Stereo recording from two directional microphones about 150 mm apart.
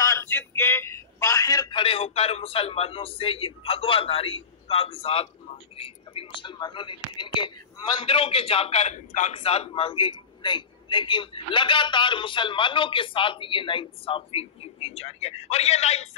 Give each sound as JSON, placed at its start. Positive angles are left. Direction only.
{"t": 0.0, "sound": "a man's voice", "side_deg": 20}